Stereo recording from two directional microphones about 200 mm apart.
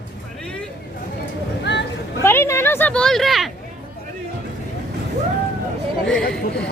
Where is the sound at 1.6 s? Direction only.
60° left (ahead or behind).